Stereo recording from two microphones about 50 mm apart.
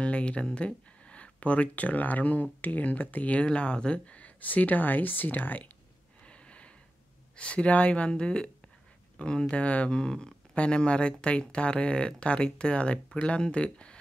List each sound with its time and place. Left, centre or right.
0.0 s speech: left
6.2 s a sound: left
7.3 s speech: left